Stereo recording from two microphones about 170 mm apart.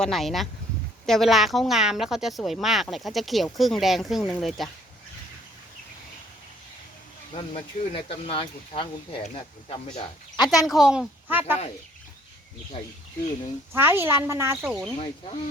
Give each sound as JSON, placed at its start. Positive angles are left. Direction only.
{"t": 0.0, "sound": "speech", "side_deg": 0}
{"t": 7.3, "sound": "speech", "side_deg": 35}
{"t": 10.7, "sound": "speech", "side_deg": -5}
{"t": 13.7, "sound": "speech", "side_deg": -15}